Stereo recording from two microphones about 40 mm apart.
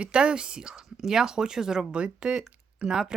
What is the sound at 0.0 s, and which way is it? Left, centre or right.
Speech, right.